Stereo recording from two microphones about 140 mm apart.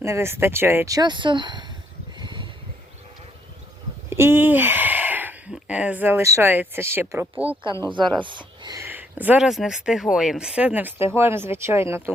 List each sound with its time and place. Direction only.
0.0 s speech: 20° right (ahead or behind)
2.1 s a sound: 35° right (ahead or behind)
4.1 s speech: 15° right (ahead or behind)
7.9 s a woman's voice: 35° right (ahead or behind)
8.8 s speech: 15° right (ahead or behind)